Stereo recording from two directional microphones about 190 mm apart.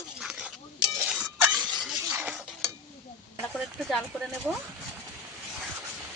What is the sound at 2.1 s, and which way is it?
Stir, 10° right (ahead or behind).